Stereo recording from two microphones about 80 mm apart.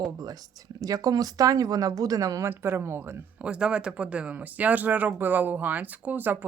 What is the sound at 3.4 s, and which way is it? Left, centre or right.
Speech, centre.